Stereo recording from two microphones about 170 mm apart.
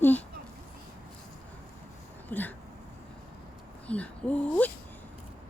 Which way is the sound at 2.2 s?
10° left (ahead or behind).